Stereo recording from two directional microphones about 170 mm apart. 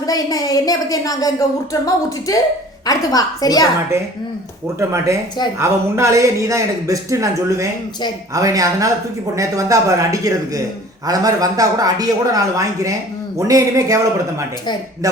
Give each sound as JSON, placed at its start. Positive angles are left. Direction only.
{"t": 0.0, "sound": "a woman's voice", "side_deg": 20}
{"t": 4.8, "sound": "a man's voice", "side_deg": -15}